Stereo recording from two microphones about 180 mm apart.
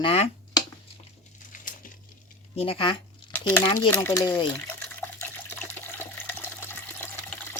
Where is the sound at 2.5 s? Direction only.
30° left (ahead or behind).